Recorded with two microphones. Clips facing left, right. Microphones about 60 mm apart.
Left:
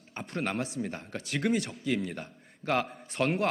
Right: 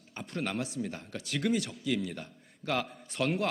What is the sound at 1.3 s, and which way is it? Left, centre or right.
A man's voice, left.